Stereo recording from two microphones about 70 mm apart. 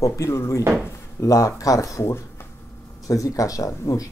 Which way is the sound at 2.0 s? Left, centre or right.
Left.